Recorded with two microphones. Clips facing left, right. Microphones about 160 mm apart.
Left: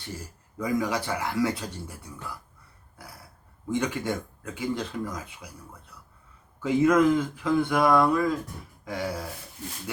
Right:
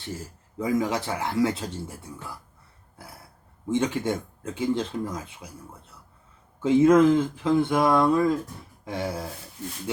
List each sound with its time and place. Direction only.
0.6 s speech: 25° right (ahead or behind)
3.7 s speech: 25° right (ahead or behind)
6.6 s speech: 25° right (ahead or behind)
8.8 s a sound: 25° right (ahead or behind)